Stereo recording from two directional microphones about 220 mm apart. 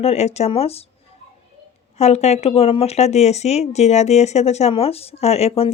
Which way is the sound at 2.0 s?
30° left (ahead or behind).